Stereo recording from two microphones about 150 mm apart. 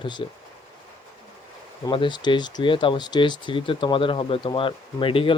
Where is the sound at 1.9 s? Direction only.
30° left (ahead or behind).